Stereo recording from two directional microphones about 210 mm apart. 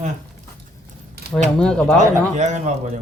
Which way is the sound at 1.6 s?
5° left (ahead or behind).